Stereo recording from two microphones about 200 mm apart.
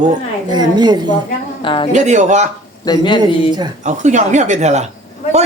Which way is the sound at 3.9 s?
35° right (ahead or behind).